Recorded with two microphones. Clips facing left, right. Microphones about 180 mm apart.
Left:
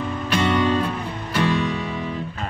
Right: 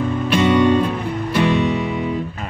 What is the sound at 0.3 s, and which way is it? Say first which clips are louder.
Music: right 6 dB; 15° right (ahead or behind).